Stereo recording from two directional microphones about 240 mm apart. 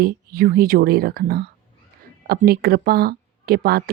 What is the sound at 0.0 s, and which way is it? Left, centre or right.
Speech, right.